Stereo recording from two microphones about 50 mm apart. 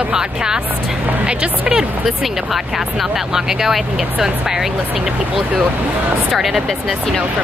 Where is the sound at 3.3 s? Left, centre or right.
Centre.